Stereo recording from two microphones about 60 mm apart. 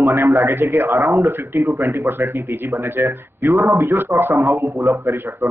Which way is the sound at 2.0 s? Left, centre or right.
Right.